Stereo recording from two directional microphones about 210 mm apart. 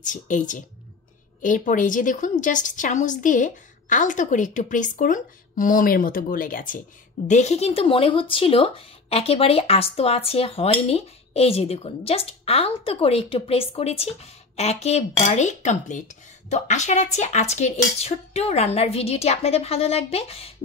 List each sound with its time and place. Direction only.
0.0 s a woman's voice: 40° left (ahead or behind)